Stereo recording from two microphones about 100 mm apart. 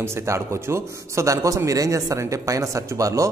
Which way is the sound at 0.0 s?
25° right (ahead or behind).